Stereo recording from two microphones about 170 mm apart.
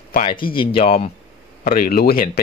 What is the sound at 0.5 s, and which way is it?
Speech, 35° left (ahead or behind).